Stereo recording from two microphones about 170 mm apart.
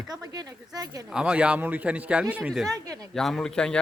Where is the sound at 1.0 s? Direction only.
5° right (ahead or behind).